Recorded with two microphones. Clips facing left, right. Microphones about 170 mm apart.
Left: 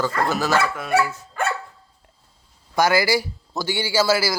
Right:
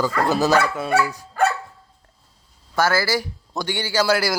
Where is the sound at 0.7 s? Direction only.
20° right (ahead or behind).